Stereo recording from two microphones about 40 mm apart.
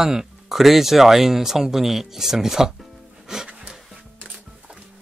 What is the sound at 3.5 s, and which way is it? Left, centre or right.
Music, right.